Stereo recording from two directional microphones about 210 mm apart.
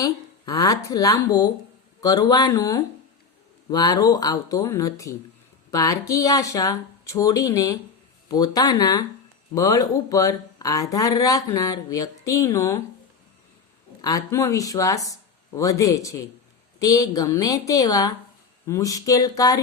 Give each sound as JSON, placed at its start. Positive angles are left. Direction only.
{"t": 0.0, "sound": "speech", "side_deg": 15}
{"t": 14.0, "sound": "speech", "side_deg": 15}